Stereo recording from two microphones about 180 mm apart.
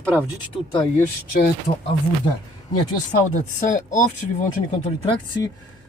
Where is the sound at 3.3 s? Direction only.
45° left (ahead or behind).